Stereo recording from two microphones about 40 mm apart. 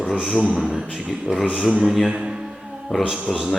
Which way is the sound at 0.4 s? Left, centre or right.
Right.